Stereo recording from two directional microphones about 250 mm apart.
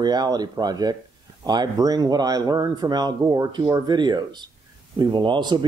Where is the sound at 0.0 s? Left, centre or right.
Centre.